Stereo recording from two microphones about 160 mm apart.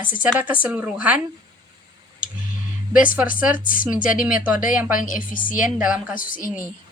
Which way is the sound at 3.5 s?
60° left (ahead or behind).